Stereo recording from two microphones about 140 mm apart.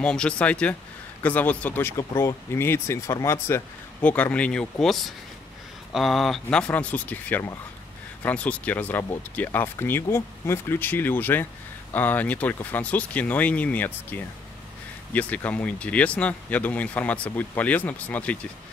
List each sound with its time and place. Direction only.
0.0 s speech: 5° left (ahead or behind)